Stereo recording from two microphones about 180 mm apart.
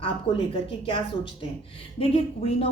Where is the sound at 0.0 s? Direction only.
30° left (ahead or behind).